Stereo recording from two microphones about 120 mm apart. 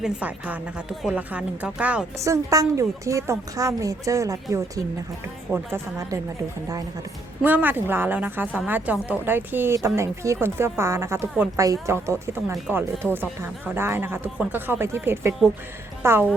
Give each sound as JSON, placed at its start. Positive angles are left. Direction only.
{"t": 0.0, "sound": "a woman's voice", "side_deg": -10}
{"t": 2.1, "sound": "a woman's voice", "side_deg": -25}
{"t": 7.4, "sound": "a woman's voice", "side_deg": -15}